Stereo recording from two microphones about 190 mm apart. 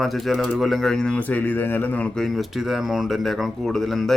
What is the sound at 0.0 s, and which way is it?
Speech, centre (ahead or behind).